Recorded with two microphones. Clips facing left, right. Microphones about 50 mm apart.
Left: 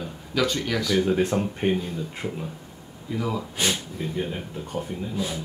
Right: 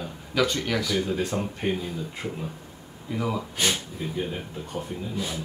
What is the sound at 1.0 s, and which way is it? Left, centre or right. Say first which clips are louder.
Speech: left 5 dB; left.